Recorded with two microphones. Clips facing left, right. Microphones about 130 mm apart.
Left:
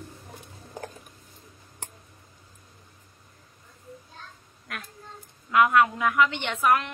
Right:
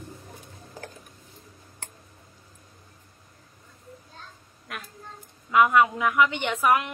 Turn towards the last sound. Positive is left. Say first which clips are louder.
# right 1 dB
turn(degrees=-10)  # may be behind; listen again after turning